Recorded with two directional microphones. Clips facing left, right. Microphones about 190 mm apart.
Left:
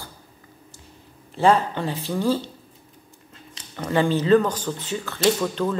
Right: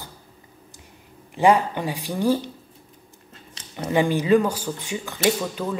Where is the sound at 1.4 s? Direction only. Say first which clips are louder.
Right 1 dB; 15° right (ahead or behind).